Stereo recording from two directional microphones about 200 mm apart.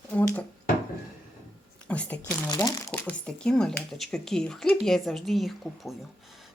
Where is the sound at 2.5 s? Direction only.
20° left (ahead or behind).